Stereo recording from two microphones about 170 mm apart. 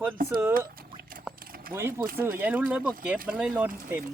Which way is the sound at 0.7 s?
60° right (ahead or behind).